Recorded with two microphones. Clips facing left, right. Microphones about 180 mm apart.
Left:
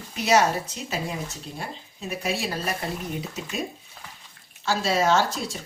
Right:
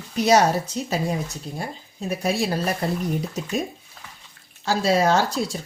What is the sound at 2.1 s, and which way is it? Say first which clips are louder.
Speech: right 5 dB; 40° right (ahead or behind).